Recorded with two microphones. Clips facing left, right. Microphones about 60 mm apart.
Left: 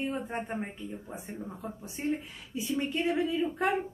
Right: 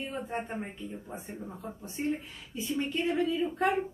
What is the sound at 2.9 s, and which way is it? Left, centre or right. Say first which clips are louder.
Speech: right 1 dB; centre.